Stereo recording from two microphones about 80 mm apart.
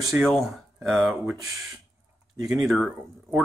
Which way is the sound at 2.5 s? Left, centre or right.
Centre.